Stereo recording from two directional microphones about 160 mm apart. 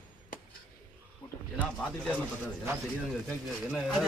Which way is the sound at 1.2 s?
30° left (ahead or behind).